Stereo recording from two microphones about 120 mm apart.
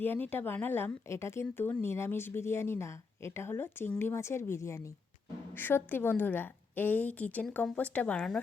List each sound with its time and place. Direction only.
0.0 s a woman's voice: 15° left (ahead or behind)